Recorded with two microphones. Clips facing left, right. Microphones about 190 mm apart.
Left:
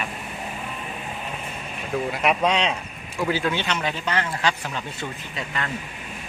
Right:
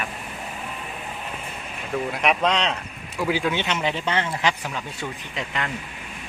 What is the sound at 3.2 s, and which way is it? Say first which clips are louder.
Speech: even; 10° right (ahead or behind).